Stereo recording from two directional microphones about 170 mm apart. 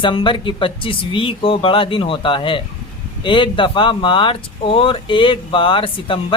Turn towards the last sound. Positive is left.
turn(degrees=30)  # may be behind; listen again after turning